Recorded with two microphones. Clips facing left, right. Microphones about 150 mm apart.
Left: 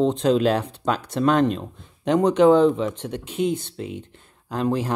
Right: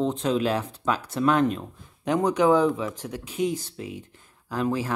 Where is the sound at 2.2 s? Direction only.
25° left (ahead or behind).